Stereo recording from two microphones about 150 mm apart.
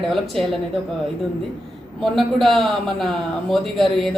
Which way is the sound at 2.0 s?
Centre (ahead or behind).